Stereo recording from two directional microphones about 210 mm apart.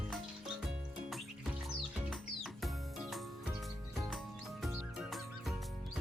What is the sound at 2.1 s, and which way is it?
Music, centre (ahead or behind).